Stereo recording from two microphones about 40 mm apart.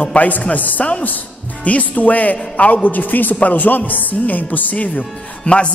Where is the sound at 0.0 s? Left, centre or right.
Left.